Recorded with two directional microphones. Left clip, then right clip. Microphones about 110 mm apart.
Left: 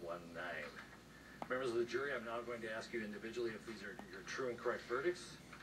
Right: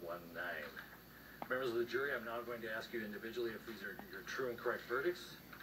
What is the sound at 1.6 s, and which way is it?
Speech, centre (ahead or behind).